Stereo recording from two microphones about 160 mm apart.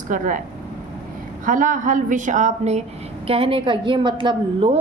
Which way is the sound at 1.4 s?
55° right (ahead or behind).